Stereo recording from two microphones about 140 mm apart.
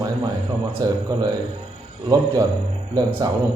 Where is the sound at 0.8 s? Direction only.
25° right (ahead or behind).